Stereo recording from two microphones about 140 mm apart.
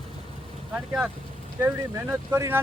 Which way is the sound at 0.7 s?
10° right (ahead or behind).